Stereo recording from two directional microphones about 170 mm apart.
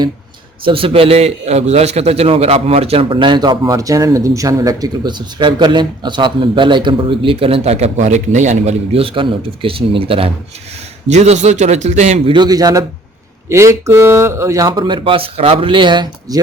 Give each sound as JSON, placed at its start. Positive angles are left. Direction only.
{"t": 0.6, "sound": "a man's voice", "side_deg": -30}
{"t": 12.3, "sound": "speech", "side_deg": -25}